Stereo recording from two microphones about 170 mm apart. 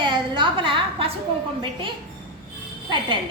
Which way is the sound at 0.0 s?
25° right (ahead or behind).